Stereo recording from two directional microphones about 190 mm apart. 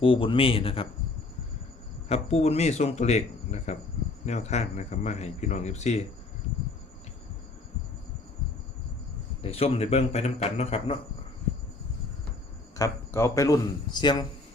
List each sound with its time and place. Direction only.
0.0 s speech: 30° left (ahead or behind)
2.0 s speech: 35° left (ahead or behind)
9.4 s speech: 30° left (ahead or behind)
12.7 s a man's voice: 15° left (ahead or behind)